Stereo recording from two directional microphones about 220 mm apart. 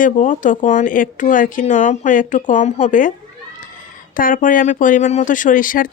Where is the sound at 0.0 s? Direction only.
35° left (ahead or behind).